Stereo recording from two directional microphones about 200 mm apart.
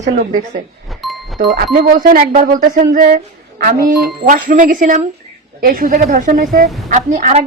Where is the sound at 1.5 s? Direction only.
50° right (ahead or behind).